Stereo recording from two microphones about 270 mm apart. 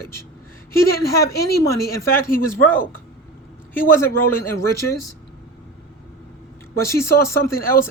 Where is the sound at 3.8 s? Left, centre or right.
Centre.